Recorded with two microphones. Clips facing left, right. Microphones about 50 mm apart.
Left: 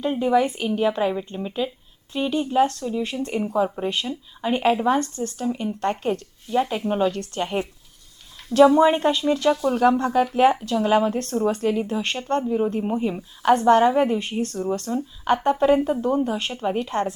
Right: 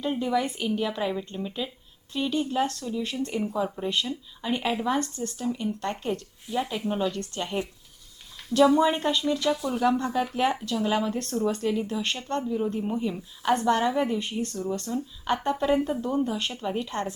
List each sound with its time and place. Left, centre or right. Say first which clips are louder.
0.0 s a woman's voice: left 6 dB; left
5.1 s a woman's voice: left 5 dB; left
5.5 s a woman's voice: left 5 dB; left
6.6 s a woman's voice: left 6 dB; centre
7.1 s a woman's voice: left 5 dB; left